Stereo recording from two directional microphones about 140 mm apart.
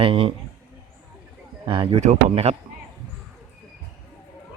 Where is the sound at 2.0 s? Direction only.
45° right (ahead or behind).